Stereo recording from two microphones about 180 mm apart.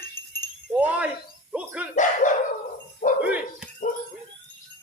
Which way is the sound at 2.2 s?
45° left (ahead or behind).